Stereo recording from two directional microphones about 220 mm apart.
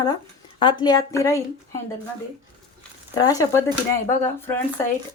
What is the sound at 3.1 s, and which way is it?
Speech, 15° left (ahead or behind).